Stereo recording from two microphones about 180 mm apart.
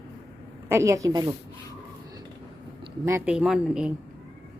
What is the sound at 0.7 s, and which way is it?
Speech, 15° right (ahead or behind).